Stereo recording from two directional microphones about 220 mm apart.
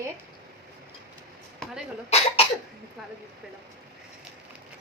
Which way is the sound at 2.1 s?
30° left (ahead or behind).